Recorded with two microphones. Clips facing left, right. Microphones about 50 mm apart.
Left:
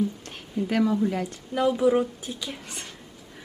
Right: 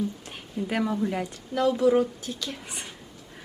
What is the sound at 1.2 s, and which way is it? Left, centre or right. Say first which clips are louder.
A woman's voice: left 1 dB; centre.